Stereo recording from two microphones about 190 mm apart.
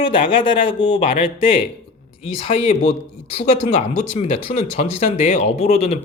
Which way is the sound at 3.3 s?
35° left (ahead or behind).